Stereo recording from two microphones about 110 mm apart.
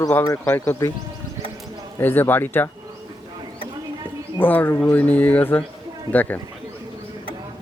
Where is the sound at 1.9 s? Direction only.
20° left (ahead or behind).